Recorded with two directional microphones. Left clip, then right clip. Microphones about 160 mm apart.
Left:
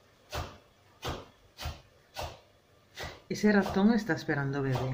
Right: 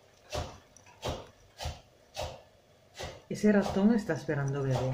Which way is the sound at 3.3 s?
20° left (ahead or behind).